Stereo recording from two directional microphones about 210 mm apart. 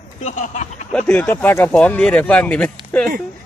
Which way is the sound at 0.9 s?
5° left (ahead or behind).